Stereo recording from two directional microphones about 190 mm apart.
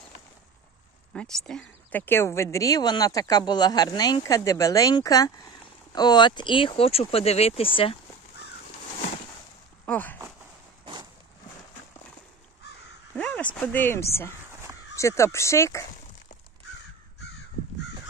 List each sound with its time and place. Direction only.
1.1 s a woman's voice: 5° left (ahead or behind); by 8.0 s 30° left (ahead or behind)
9.8 s speech: 10° left (ahead or behind)
12.6 s crow: 60° left (ahead or behind)
13.1 s speech: 5° left (ahead or behind)
14.5 s crow: 15° right (ahead or behind)
15.0 s speech: 15° left (ahead or behind)